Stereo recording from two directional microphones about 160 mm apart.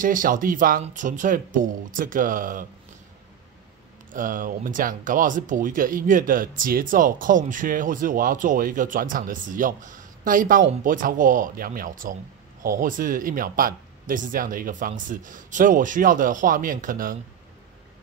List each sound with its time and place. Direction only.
0.0 s speech: 55° right (ahead or behind)
4.1 s speech: 55° right (ahead or behind)